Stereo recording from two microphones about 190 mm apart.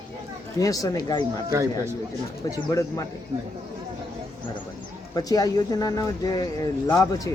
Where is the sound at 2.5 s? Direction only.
15° left (ahead or behind).